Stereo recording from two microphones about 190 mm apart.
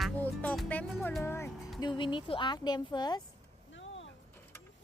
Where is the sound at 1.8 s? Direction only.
25° left (ahead or behind).